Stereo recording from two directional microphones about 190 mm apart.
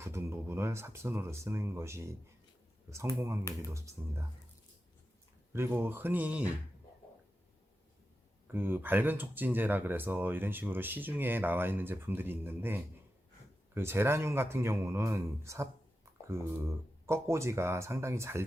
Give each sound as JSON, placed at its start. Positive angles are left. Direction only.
{"t": 0.0, "sound": "speech", "side_deg": -15}
{"t": 3.2, "sound": "speech", "side_deg": -15}
{"t": 5.5, "sound": "speech", "side_deg": -10}
{"t": 8.5, "sound": "speech", "side_deg": -10}
{"t": 16.2, "sound": "speech", "side_deg": -15}